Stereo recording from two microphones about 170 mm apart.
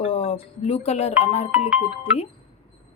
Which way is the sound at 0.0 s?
35° left (ahead or behind).